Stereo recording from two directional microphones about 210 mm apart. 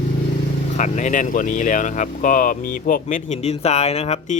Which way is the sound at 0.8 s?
35° left (ahead or behind).